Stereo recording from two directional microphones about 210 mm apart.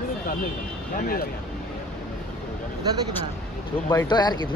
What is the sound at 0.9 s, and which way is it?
Speech, 45° left (ahead or behind).